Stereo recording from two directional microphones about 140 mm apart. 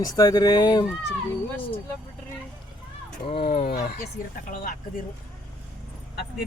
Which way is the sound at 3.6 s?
90° left.